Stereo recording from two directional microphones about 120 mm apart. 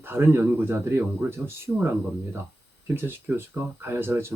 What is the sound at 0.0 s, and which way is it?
Speech, 15° right (ahead or behind).